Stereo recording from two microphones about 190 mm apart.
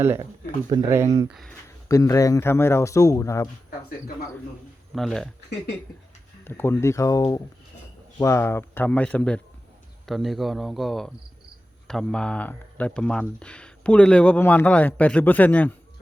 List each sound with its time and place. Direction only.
0.0 s speech: 15° right (ahead or behind)
1.3 s speech: centre (ahead or behind)
1.9 s speech: 15° left (ahead or behind)
4.9 s speech: centre (ahead or behind)
6.4 s speech: 10° left (ahead or behind)